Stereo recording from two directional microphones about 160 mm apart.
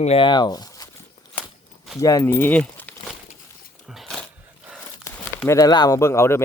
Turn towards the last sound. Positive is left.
turn(degrees=15)  # may be behind; listen again after turning